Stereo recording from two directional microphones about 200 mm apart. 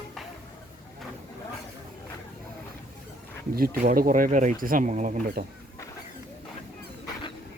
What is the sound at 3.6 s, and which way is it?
Speech, 45° right (ahead or behind).